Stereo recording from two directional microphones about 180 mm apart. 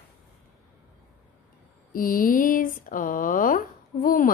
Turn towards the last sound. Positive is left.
turn(degrees=50)  # may be behind; listen again after turning